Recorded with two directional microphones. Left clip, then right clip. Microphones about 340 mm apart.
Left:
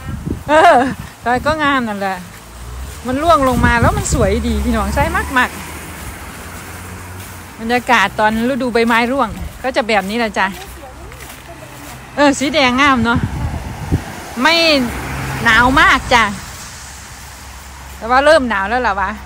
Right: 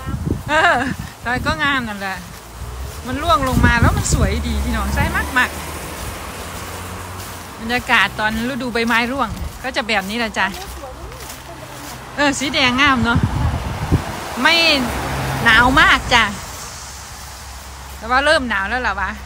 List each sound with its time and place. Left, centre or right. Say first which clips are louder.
0.5 s speech: left 6 dB; centre
7.6 s speech: left 3 dB; centre
12.2 s speech: left 4 dB; centre
14.4 s speech: left 2 dB; centre
14.8 s vehicle: left 1 dB; right
15.4 s speech: left 2 dB; centre
18.0 s speech: left 5 dB; centre